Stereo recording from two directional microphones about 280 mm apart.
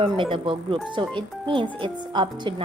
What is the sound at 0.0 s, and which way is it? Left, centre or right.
A woman's voice, centre.